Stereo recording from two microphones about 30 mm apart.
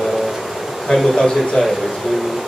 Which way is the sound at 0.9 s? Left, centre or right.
Centre.